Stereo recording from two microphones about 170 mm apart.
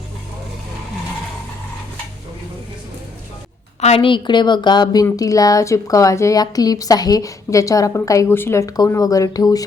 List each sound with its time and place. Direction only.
3.8 s speech: 40° left (ahead or behind); by 9.6 s 20° left (ahead or behind)